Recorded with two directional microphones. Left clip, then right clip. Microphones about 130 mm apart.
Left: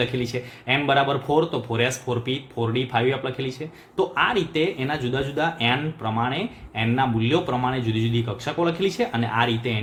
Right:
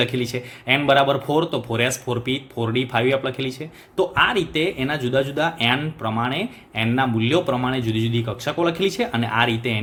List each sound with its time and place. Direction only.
0.0 s speech: 40° right (ahead or behind)